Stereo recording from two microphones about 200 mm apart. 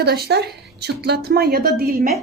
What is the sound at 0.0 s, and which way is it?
A woman's voice, 55° right (ahead or behind).